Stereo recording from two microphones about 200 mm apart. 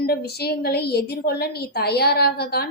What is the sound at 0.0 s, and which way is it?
A woman's voice, 50° left (ahead or behind).